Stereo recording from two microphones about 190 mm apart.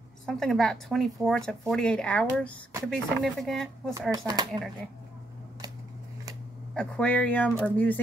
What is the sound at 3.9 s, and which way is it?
Speech, 20° right (ahead or behind).